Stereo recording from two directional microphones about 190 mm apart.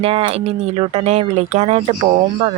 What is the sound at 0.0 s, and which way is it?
A woman's voice, 30° right (ahead or behind).